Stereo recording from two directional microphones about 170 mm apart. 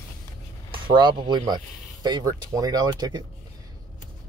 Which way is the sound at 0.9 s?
25° right (ahead or behind).